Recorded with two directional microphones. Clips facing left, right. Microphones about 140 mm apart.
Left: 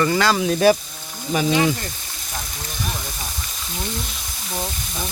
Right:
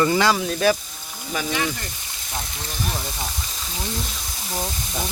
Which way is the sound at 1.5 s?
20° left (ahead or behind).